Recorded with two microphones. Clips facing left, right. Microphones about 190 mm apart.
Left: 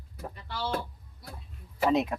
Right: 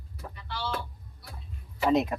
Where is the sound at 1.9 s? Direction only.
Centre (ahead or behind).